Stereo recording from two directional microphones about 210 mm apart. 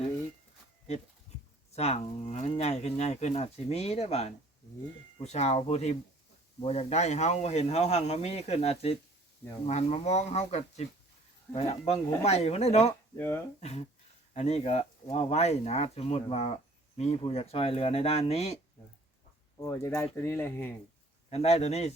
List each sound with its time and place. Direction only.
1.7 s a man's voice: 30° left (ahead or behind)
13.1 s speech: 10° left (ahead or behind)
13.6 s a man's voice: 30° left (ahead or behind)
19.6 s speech: 10° left (ahead or behind)
21.2 s a man's voice: 30° left (ahead or behind)